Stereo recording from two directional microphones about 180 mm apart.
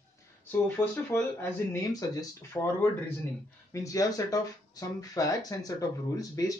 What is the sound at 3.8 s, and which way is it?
Speech, 20° left (ahead or behind).